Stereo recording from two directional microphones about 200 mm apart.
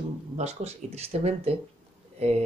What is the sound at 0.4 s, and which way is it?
Speech, 30° right (ahead or behind).